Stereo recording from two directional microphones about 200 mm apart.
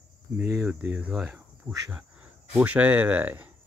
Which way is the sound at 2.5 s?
5° right (ahead or behind).